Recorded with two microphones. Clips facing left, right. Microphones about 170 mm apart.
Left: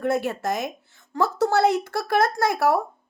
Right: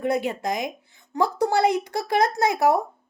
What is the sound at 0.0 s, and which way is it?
Speech, 15° right (ahead or behind).